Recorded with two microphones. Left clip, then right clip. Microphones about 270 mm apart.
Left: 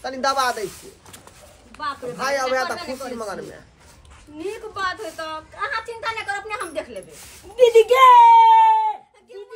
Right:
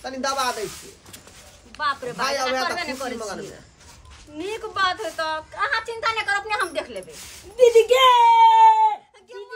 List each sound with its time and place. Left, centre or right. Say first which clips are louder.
0.0 s speech: left 3 dB; centre
1.8 s a woman's voice: right 4 dB; centre
2.2 s speech: left 2 dB; centre
2.8 s a woman's voice: right 2 dB; centre
4.4 s a woman's voice: right 3 dB; centre
7.5 s speech: left 1 dB; centre
8.1 s speech: left 5 dB; centre